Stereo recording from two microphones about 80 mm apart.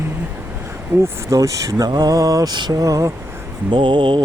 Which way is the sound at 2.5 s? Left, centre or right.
Right.